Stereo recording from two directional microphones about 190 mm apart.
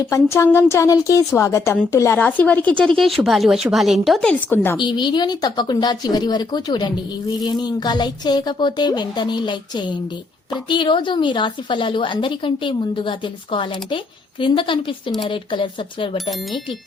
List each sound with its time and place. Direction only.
0.0 s speech: 15° left (ahead or behind)
4.8 s speech: 25° left (ahead or behind)